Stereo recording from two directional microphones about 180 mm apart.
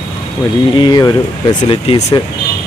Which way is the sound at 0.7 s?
25° left (ahead or behind).